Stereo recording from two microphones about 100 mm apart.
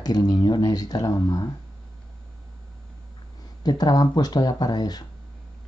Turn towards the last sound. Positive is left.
turn(degrees=40)  # may be behind; listen again after turning